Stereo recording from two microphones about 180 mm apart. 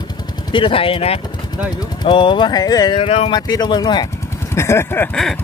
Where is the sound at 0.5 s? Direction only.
30° left (ahead or behind).